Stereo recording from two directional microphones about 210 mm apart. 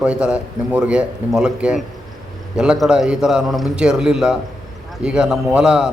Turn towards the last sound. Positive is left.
turn(degrees=-5)  # may be behind; listen again after turning